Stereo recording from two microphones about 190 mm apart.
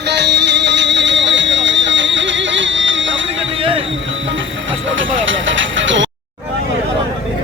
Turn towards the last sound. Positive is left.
turn(degrees=-75)  # may be behind; listen again after turning